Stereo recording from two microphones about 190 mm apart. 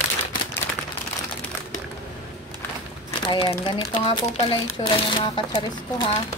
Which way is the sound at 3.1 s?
30° left (ahead or behind).